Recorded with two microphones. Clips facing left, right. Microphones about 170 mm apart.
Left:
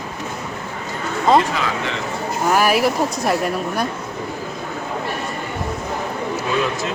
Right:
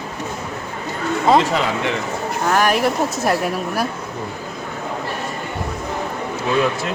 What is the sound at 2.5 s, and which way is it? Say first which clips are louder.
A woman's voice: left 1 dB; 5° left (ahead or behind).